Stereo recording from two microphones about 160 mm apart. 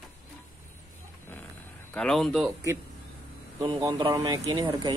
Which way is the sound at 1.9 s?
5° left (ahead or behind).